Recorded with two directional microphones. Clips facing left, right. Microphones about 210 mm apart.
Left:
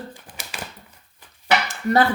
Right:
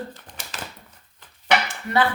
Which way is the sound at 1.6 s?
40° left (ahead or behind).